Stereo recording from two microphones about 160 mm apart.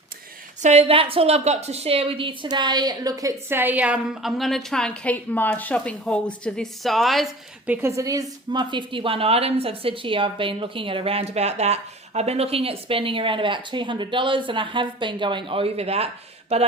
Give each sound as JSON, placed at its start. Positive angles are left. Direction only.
{"t": 0.6, "sound": "a woman's voice", "side_deg": -40}
{"t": 7.7, "sound": "a woman's voice", "side_deg": -15}